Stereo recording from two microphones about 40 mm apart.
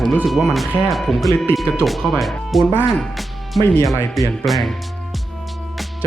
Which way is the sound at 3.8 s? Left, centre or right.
Centre.